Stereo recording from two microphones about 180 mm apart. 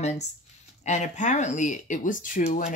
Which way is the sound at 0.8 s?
40° left (ahead or behind).